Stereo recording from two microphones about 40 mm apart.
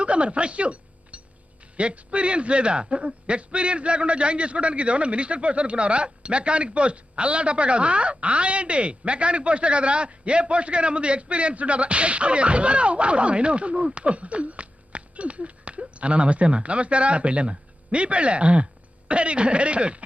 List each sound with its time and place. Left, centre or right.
0.0 s chink: right
1.7 s a man's voice: right